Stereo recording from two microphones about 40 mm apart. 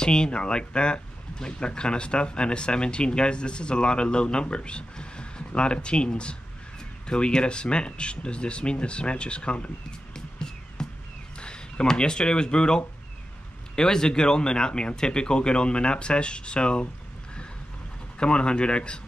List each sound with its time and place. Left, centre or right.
0.0 s speech: centre
11.3 s a sound: left
11.9 s speech: left
18.2 s speech: left